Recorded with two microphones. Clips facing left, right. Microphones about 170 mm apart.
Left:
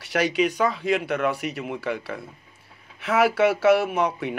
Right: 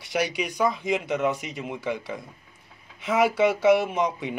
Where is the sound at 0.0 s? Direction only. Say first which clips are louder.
Left 5 dB; 15° right (ahead or behind).